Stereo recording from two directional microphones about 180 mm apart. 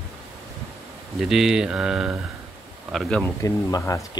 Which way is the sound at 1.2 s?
5° right (ahead or behind).